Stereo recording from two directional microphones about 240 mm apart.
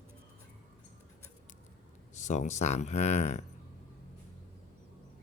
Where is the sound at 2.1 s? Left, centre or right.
Left.